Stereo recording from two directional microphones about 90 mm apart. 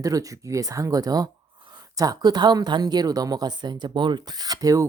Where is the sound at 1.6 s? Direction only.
55° right (ahead or behind).